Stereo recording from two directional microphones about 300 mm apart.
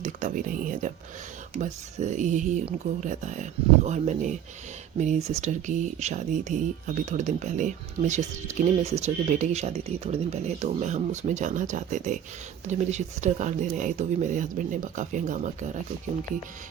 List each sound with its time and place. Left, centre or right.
0.0 s speech: right